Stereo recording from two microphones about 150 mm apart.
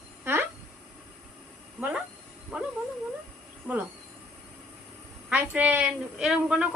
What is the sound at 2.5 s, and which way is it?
Cat, 5° right (ahead or behind).